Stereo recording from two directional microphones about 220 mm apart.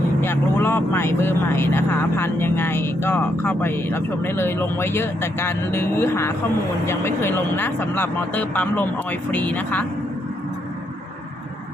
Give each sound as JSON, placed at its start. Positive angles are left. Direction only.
{"t": 0.2, "sound": "speech", "side_deg": 10}